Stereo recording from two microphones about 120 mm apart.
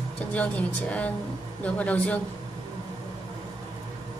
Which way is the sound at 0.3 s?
10° left (ahead or behind).